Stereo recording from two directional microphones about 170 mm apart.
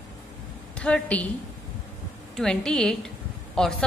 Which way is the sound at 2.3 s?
5° left (ahead or behind).